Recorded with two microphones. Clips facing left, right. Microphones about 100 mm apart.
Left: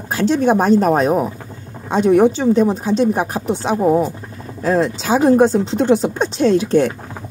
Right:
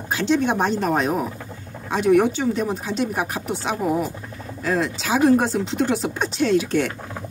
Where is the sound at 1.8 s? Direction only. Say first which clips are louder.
Left 5 dB; 30° left (ahead or behind).